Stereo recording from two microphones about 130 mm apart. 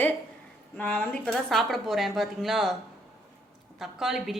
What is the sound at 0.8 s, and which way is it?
A woman's voice, 15° left (ahead or behind).